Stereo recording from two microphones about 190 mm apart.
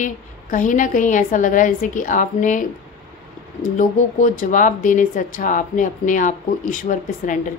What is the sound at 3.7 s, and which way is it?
A woman's voice, 40° left (ahead or behind).